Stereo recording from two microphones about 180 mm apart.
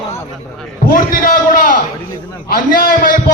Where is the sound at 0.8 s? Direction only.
50° left (ahead or behind).